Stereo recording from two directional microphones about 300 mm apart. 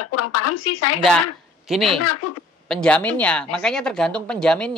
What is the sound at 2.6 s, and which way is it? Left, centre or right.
Speech, centre.